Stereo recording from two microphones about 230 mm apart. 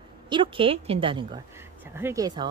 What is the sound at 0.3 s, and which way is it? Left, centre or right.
Speech, right.